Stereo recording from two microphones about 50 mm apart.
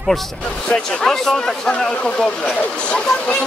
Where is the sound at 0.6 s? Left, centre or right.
Centre.